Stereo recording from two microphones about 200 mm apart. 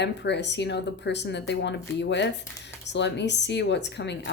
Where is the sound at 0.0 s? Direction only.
60° left (ahead or behind).